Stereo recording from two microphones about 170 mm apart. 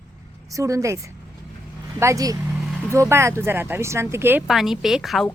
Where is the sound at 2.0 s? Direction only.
20° right (ahead or behind).